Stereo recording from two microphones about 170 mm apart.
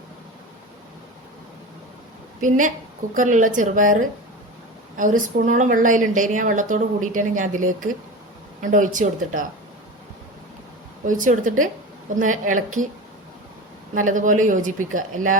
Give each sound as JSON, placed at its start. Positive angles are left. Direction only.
{"t": 2.4, "sound": "a woman's voice", "side_deg": -50}
{"t": 4.9, "sound": "a woman's voice", "side_deg": -50}
{"t": 11.0, "sound": "a woman's voice", "side_deg": -50}
{"t": 13.9, "sound": "a woman's voice", "side_deg": -50}